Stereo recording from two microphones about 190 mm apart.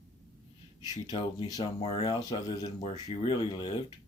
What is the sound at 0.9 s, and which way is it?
Speech, 30° left (ahead or behind).